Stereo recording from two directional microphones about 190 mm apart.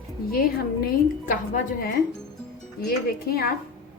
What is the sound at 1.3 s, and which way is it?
Speech, 45° left (ahead or behind).